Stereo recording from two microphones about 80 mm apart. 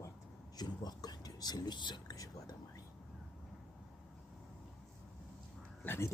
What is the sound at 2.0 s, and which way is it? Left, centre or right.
Whispering, left.